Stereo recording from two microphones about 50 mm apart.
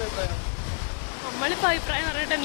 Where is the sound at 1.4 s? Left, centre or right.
Left.